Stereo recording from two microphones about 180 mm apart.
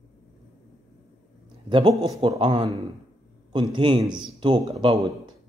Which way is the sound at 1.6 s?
30° right (ahead or behind).